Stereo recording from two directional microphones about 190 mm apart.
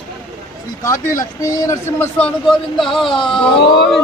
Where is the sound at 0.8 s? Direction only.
15° left (ahead or behind).